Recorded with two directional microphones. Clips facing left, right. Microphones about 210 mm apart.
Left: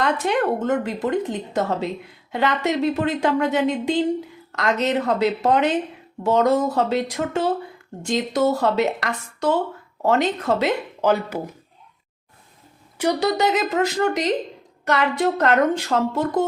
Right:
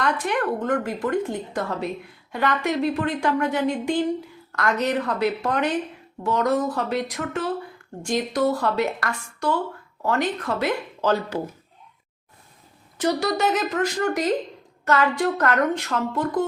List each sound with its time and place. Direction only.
0.0 s a woman's voice: 25° left (ahead or behind)
13.0 s a woman's voice: 15° left (ahead or behind)